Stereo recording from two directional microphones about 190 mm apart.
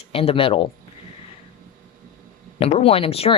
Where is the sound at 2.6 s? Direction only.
30° left (ahead or behind).